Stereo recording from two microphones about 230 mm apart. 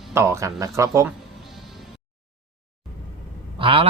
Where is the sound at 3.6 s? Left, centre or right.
Right.